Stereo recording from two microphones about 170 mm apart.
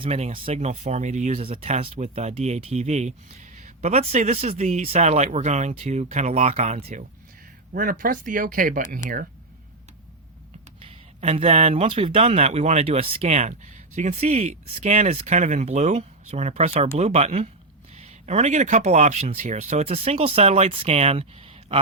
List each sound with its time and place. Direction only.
0.0 s speech: 35° right (ahead or behind)
7.7 s speech: 55° right (ahead or behind)
10.8 s speech: 35° right (ahead or behind)